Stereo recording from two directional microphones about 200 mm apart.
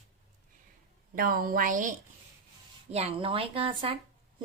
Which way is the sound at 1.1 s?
45° right (ahead or behind).